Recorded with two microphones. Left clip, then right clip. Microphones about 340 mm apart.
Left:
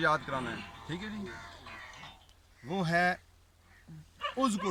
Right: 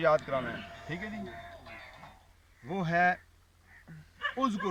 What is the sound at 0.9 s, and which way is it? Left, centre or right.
Music, centre.